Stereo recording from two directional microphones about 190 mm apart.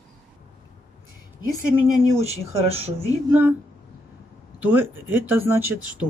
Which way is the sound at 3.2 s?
10° right (ahead or behind).